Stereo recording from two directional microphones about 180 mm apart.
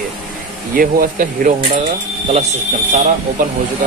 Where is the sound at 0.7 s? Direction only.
50° right (ahead or behind).